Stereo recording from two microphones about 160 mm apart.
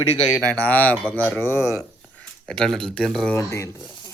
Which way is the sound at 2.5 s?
5° left (ahead or behind).